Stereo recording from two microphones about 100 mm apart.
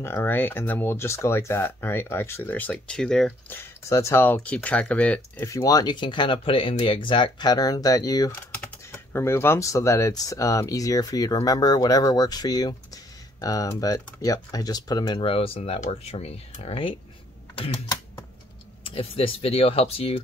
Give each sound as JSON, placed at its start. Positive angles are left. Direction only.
{"t": 0.0, "sound": "speech", "side_deg": 25}
{"t": 3.4, "sound": "speech", "side_deg": 25}
{"t": 5.4, "sound": "speech", "side_deg": 30}
{"t": 8.9, "sound": "speech", "side_deg": 25}
{"t": 15.0, "sound": "speech", "side_deg": 60}
{"t": 18.9, "sound": "speech", "side_deg": 65}